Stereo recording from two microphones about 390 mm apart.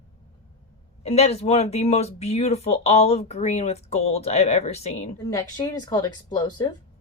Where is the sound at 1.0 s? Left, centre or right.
Centre.